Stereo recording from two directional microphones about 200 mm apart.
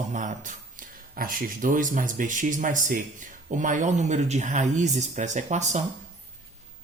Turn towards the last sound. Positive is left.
turn(degrees=-35)  # may be behind; listen again after turning